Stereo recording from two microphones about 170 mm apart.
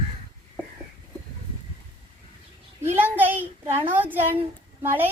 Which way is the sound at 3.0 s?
10° right (ahead or behind).